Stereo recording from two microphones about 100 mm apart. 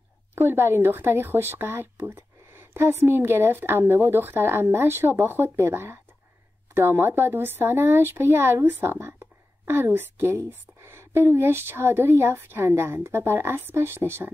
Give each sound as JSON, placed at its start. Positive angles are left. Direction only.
{"t": 0.3, "sound": "speech", "side_deg": -25}